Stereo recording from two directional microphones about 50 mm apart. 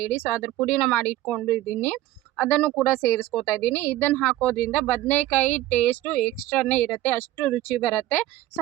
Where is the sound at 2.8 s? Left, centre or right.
Left.